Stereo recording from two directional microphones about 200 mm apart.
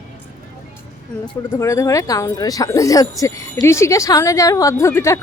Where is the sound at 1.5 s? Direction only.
15° left (ahead or behind).